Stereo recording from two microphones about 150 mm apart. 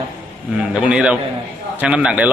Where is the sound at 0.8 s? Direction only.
5° right (ahead or behind).